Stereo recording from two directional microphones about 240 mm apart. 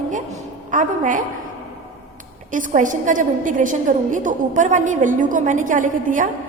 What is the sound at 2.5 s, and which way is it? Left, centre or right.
A woman's voice, right.